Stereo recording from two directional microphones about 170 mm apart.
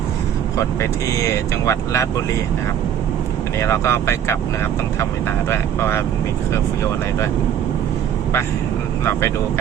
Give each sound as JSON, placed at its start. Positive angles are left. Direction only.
{"t": 0.5, "sound": "speech", "side_deg": 15}
{"t": 3.6, "sound": "speech", "side_deg": 15}
{"t": 5.5, "sound": "speech", "side_deg": 15}